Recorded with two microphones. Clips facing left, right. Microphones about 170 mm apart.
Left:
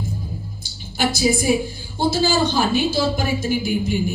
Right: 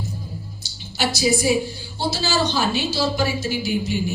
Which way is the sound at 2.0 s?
50° left (ahead or behind).